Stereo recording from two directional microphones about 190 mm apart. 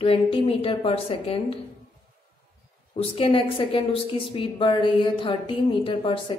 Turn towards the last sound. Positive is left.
turn(degrees=25)  # may be behind; listen again after turning